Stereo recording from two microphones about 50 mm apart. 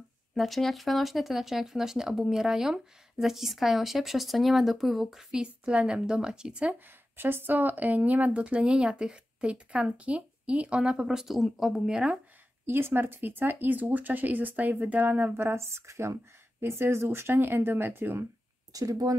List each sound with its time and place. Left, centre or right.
0.3 s speech: centre
5.3 s a woman's voice: centre
7.2 s speech: right; by 12.2 s centre
12.6 s speech: right
15.3 s speech: right
16.6 s speech: right